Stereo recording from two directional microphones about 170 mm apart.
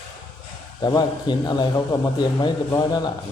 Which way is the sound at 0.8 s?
25° left (ahead or behind).